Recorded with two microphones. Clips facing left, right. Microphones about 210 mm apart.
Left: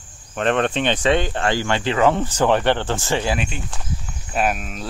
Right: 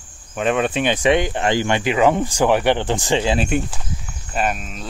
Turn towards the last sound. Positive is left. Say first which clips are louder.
# left 1 dB
turn(degrees=5)  # may be behind; listen again after turning